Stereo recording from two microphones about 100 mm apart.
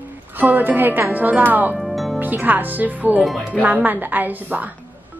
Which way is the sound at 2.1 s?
15° right (ahead or behind).